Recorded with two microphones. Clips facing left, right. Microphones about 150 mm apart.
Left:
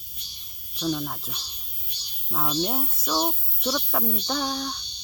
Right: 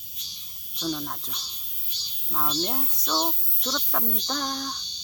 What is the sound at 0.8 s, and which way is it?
Speech, 5° left (ahead or behind).